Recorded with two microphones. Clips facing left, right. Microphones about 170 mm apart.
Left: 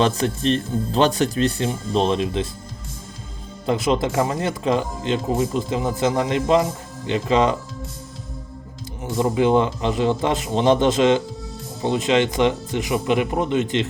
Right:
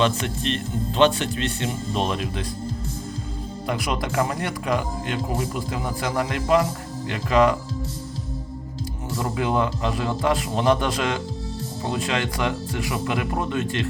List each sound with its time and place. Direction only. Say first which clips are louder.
0.0 s speech: left 3 dB; 35° left (ahead or behind)
3.7 s speech: left 6 dB; 25° left (ahead or behind)
9.1 s speech: left 6 dB; 25° left (ahead or behind)